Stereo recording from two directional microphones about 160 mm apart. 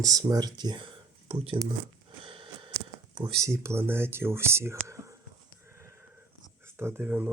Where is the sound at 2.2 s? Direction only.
35° right (ahead or behind).